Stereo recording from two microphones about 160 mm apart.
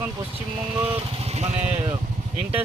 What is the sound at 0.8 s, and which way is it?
Speech, 40° right (ahead or behind).